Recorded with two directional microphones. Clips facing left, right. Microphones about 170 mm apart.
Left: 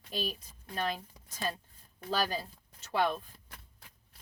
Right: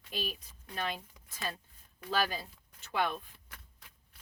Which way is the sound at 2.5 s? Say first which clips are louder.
Left 3 dB; 40° left (ahead or behind).